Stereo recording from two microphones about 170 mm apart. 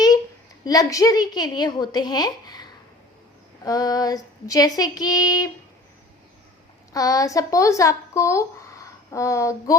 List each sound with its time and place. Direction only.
0.6 s a woman's voice: 20° left (ahead or behind)
6.9 s speech: 20° left (ahead or behind)